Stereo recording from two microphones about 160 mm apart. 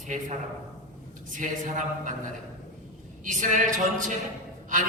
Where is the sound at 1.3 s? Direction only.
50° right (ahead or behind).